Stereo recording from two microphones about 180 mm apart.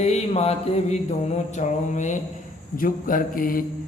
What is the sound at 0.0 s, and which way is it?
Music, 35° left (ahead or behind).